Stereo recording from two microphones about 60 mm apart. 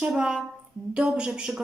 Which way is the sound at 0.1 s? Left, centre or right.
Centre.